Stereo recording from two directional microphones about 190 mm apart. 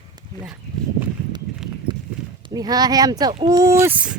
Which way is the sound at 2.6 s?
20° right (ahead or behind).